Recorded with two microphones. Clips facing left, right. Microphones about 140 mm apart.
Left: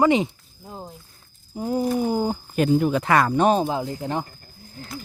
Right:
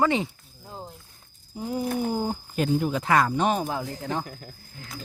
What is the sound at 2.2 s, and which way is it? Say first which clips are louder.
Speech: left 5 dB; 65° left (ahead or behind).